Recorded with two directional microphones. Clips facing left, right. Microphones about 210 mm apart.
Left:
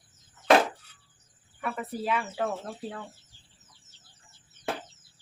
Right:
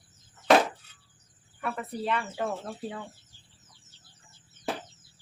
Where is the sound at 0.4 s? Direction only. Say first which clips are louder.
Even; 5° right (ahead or behind).